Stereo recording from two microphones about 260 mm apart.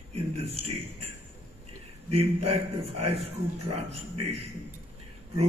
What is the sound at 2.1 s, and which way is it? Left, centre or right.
A man's voice, right.